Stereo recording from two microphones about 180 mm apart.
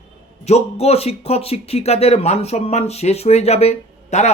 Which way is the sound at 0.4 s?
35° left (ahead or behind).